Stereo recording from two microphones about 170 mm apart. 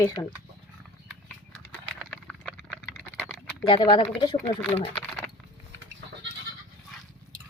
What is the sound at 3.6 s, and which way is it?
Speech, 30° left (ahead or behind).